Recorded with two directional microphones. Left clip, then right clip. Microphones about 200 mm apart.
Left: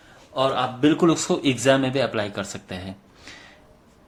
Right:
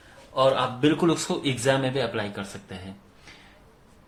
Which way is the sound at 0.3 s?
15° left (ahead or behind).